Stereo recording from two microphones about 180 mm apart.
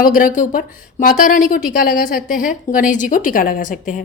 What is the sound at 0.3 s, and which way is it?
A woman's voice, 50° left (ahead or behind).